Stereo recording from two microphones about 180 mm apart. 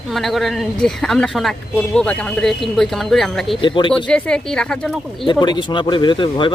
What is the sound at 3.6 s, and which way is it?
Speech, 25° left (ahead or behind).